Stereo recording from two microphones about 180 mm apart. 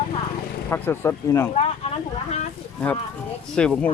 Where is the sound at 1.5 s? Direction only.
35° left (ahead or behind).